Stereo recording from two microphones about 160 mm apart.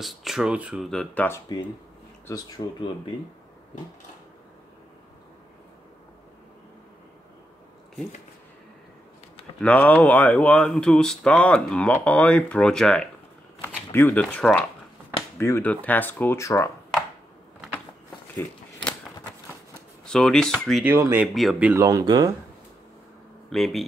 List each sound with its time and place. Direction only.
0.0 s speech: centre (ahead or behind)
2.2 s speech: 25° left (ahead or behind)
9.6 s speech: 10° left (ahead or behind)
20.1 s speech: 5° left (ahead or behind)
20.8 s speech: 15° right (ahead or behind)
21.8 s speech: 25° right (ahead or behind)
23.5 s speech: centre (ahead or behind)